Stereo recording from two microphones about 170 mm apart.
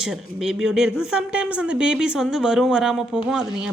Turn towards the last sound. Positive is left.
turn(degrees=-5)  # may be behind; listen again after turning